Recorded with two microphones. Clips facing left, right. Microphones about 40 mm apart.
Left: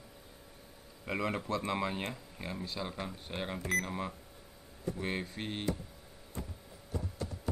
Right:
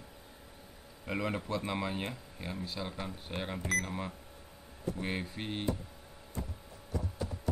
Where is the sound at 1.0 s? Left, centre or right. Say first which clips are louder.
Even; centre.